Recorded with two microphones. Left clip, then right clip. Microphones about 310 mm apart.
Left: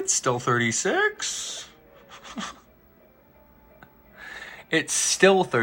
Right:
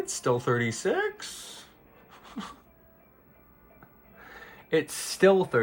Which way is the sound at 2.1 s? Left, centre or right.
Centre.